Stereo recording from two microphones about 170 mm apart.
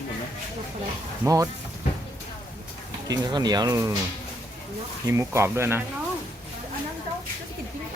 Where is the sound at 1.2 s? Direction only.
20° right (ahead or behind).